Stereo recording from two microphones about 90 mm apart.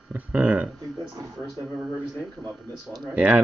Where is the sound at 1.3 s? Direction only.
Centre (ahead or behind).